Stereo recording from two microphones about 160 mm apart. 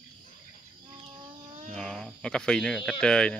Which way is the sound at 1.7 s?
5° left (ahead or behind).